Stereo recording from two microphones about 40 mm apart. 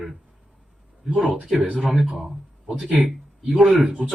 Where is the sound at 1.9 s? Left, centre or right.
Centre.